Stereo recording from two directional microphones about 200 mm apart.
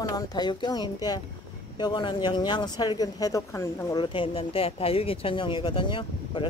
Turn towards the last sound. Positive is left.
turn(degrees=25)  # may be behind; listen again after turning